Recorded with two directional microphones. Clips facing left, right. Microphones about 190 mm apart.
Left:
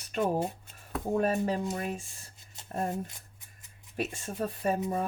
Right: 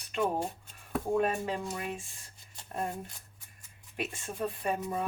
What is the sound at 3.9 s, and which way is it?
Speech, 40° left (ahead or behind).